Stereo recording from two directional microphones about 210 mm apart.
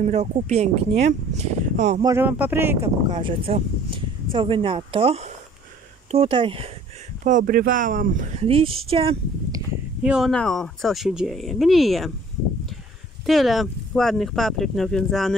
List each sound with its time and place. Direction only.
0.0 s speech: 35° right (ahead or behind)
2.0 s speech: 15° right (ahead or behind)
3.1 s speech: 25° right (ahead or behind)
7.2 s speech: 40° right (ahead or behind)
10.0 s speech: centre (ahead or behind)
13.2 s speech: centre (ahead or behind)